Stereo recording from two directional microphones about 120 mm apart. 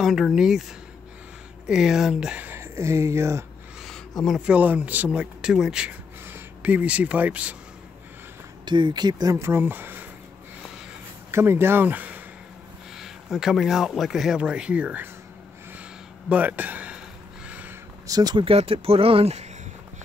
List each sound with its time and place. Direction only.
0.0 s speech: centre (ahead or behind)
1.7 s speech: 5° right (ahead or behind); by 3.4 s 20° right (ahead or behind)
3.8 s a sound: centre (ahead or behind)
4.5 s speech: 10° right (ahead or behind)
8.6 s speech: 40° right (ahead or behind); by 10.0 s 15° right (ahead or behind)
11.3 s speech: 20° right (ahead or behind)
12.9 s speech: 5° right (ahead or behind)
16.3 s speech: 15° right (ahead or behind)
17.5 s a sound: 15° right (ahead or behind)
18.0 s speech: 35° right (ahead or behind)
18.4 s speech: 55° right (ahead or behind)